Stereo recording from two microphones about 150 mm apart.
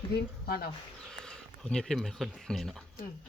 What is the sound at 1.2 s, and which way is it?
Speech, 5° left (ahead or behind).